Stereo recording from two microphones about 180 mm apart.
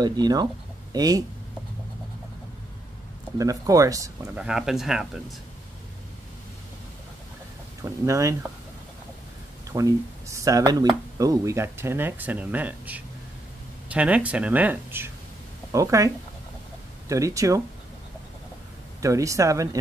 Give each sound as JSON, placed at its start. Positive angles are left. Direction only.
{"t": 0.0, "sound": "speech", "side_deg": -20}
{"t": 3.3, "sound": "speech", "side_deg": -20}
{"t": 4.4, "sound": "speech", "side_deg": -5}
{"t": 7.8, "sound": "speech", "side_deg": -15}
{"t": 9.7, "sound": "speech", "side_deg": -15}
{"t": 17.1, "sound": "speech", "side_deg": -15}
{"t": 18.9, "sound": "speech", "side_deg": -15}